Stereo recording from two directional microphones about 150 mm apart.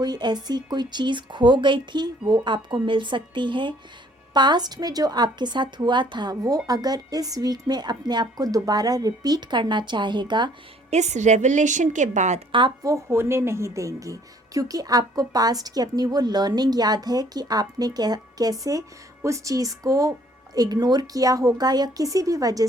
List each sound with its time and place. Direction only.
0.0 s a woman's voice: 30° right (ahead or behind)
10.9 s a woman's voice: 50° right (ahead or behind)
12.5 s speech: 35° right (ahead or behind)
12.8 s speech: 20° right (ahead or behind)